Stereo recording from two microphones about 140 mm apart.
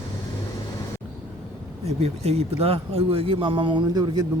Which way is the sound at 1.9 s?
50° right (ahead or behind).